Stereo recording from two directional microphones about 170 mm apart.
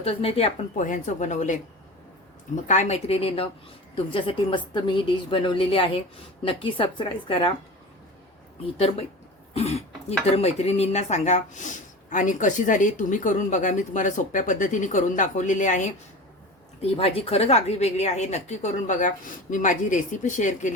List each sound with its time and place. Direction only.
0.0 s speech: 35° left (ahead or behind)
0.8 s speech: 45° left (ahead or behind)
2.6 s speech: 40° left (ahead or behind)
9.6 s speech: 40° left (ahead or behind)
16.8 s speech: 35° left (ahead or behind)